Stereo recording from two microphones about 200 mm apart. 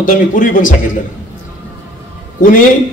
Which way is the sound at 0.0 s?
40° left (ahead or behind).